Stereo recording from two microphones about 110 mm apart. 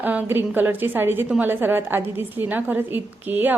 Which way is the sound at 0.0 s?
15° right (ahead or behind).